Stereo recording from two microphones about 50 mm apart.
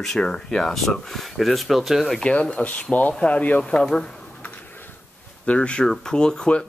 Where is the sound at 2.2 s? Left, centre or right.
Left.